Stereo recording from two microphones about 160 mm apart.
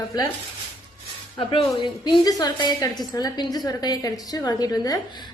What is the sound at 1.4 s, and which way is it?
A woman's voice, 30° left (ahead or behind).